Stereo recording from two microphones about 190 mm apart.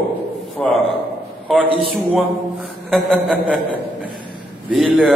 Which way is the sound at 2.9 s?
Centre (ahead or behind).